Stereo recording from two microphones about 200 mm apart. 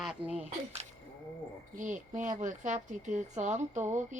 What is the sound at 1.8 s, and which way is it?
Speech, 40° right (ahead or behind).